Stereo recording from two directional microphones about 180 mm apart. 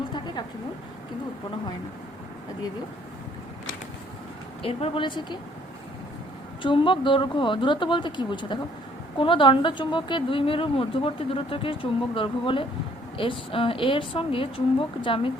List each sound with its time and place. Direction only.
4.6 s a woman's voice: 30° left (ahead or behind)
6.6 s a woman's voice: 30° left (ahead or behind)